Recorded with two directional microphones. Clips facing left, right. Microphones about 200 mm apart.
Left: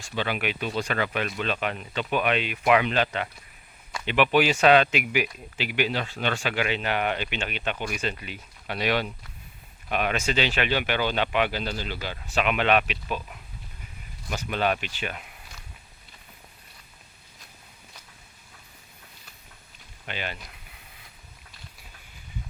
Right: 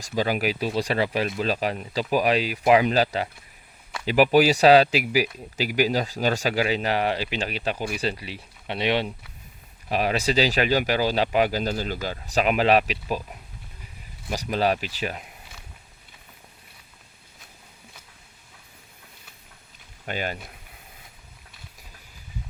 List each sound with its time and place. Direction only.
0.2 s speech: 40° right (ahead or behind)
14.3 s speech: 35° right (ahead or behind)
20.1 s speech: 40° right (ahead or behind)